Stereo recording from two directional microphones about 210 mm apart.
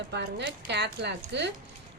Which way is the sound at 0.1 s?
55° right (ahead or behind).